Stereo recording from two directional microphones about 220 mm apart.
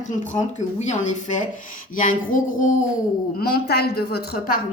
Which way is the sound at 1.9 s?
35° left (ahead or behind).